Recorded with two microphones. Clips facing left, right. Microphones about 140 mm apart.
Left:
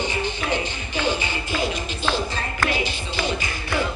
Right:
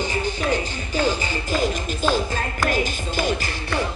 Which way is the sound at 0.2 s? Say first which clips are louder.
Right 2 dB; 40° right (ahead or behind).